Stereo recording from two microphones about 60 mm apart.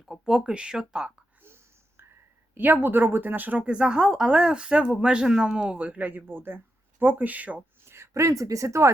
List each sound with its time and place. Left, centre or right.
0.0 s speech: centre
1.4 s a sound: right
2.6 s speech: right
3.6 s speech: centre
7.9 s speech: right